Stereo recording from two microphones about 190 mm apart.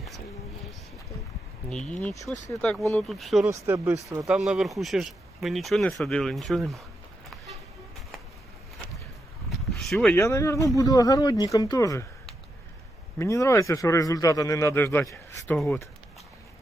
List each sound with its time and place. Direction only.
1.7 s speech: 5° left (ahead or behind)
3.4 s speech: 10° right (ahead or behind)
4.3 s speech: 5° right (ahead or behind)
9.5 s a sound: centre (ahead or behind)
10.2 s a man's voice: 15° left (ahead or behind)
13.1 s a man's voice: 15° left (ahead or behind)
15.5 s speech: centre (ahead or behind)